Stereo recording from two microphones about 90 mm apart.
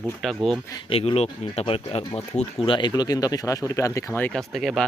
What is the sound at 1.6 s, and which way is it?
Speech, 90° left.